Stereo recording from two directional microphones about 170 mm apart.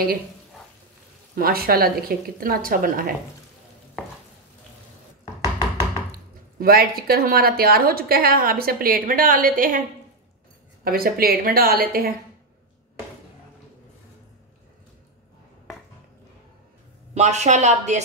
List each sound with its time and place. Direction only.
1.3 s speech: 60° right (ahead or behind)
6.1 s speech: 60° right (ahead or behind)
10.8 s speech: 60° right (ahead or behind)
17.1 s speech: 40° right (ahead or behind)